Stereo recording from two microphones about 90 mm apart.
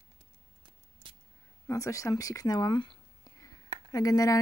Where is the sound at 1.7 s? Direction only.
35° left (ahead or behind); by 3.0 s 60° left (ahead or behind).